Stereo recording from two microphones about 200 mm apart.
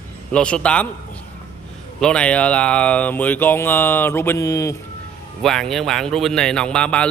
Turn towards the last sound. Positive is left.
turn(degrees=5)  # may be behind; listen again after turning